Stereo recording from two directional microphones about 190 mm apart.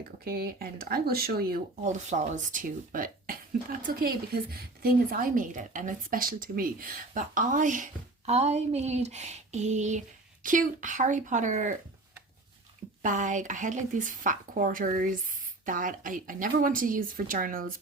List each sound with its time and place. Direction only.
0.3 s speech: 50° right (ahead or behind)
13.0 s speech: 45° right (ahead or behind)